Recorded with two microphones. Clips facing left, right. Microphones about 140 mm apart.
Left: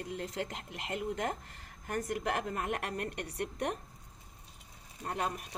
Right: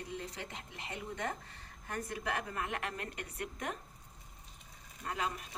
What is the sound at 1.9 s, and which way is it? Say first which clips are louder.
A woman's voice: left 4 dB; 45° left (ahead or behind).